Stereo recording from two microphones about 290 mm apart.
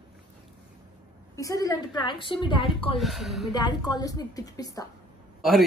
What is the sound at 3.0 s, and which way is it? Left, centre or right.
Speech, centre.